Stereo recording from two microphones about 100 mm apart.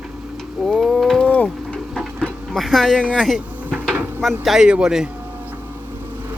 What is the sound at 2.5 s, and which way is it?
Speech, centre (ahead or behind).